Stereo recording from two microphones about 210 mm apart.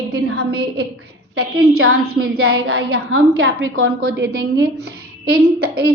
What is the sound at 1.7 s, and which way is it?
Speech, 90° right.